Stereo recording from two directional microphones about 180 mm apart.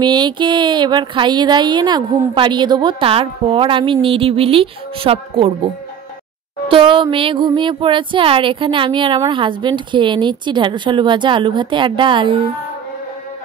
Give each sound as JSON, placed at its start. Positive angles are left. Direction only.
{"t": 0.0, "sound": "speech", "side_deg": -25}
{"t": 6.7, "sound": "speech", "side_deg": -25}